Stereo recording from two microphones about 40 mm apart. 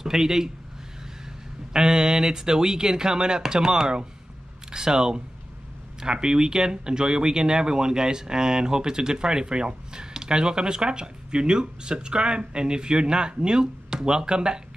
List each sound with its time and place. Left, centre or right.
0.0 s a man's voice: centre
1.7 s speech: centre